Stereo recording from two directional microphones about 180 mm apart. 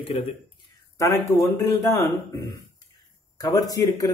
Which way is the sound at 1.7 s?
15° left (ahead or behind).